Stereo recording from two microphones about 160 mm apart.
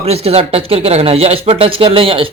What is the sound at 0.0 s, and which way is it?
Speech, 40° right (ahead or behind).